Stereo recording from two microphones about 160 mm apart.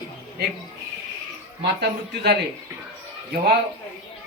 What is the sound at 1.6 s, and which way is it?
Speech, 90° right.